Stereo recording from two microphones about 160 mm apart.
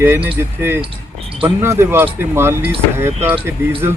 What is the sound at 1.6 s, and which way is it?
Speech, 15° right (ahead or behind).